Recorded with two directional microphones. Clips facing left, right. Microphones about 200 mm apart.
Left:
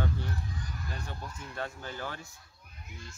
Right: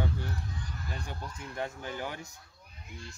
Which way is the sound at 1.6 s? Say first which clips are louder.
Right 2 dB; 15° right (ahead or behind).